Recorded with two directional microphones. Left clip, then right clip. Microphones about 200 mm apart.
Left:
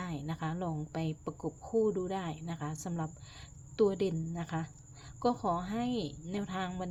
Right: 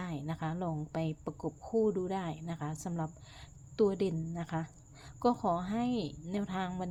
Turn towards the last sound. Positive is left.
turn(degrees=-5)  # may be behind; listen again after turning